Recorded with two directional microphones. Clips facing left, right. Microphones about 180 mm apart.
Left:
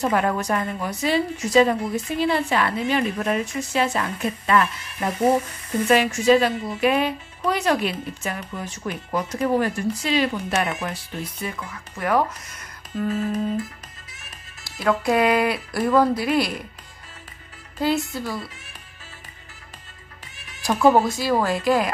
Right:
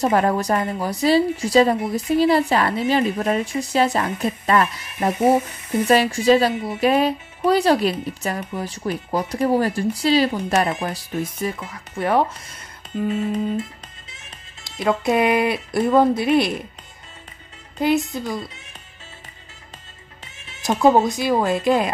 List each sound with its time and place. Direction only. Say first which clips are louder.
0.0 s speech: right 3 dB; 35° right (ahead or behind)
5.9 s speech: right 1 dB; 35° right (ahead or behind)
17.7 s speech: right 3 dB; 20° right (ahead or behind)
20.6 s speech: right 1 dB; 20° right (ahead or behind)